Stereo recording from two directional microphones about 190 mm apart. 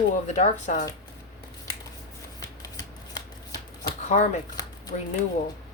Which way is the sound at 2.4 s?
20° left (ahead or behind).